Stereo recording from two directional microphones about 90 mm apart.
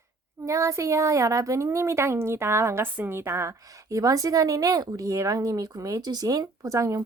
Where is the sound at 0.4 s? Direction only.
35° right (ahead or behind).